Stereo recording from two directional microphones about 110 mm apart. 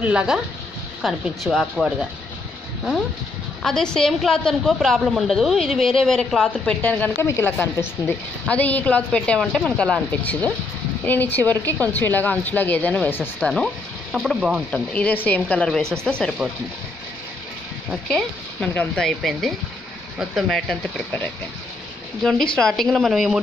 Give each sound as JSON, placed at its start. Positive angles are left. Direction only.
{"t": 0.0, "sound": "a woman's voice", "side_deg": -10}
{"t": 3.6, "sound": "a woman's voice", "side_deg": 5}
{"t": 7.2, "sound": "a woman's voice", "side_deg": 25}
{"t": 14.7, "sound": "speech", "side_deg": 10}
{"t": 15.8, "sound": "speech", "side_deg": -25}
{"t": 18.0, "sound": "a woman's voice", "side_deg": 10}
{"t": 22.2, "sound": "a woman's voice", "side_deg": 5}